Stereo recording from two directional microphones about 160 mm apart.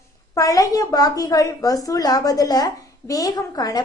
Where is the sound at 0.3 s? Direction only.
20° left (ahead or behind).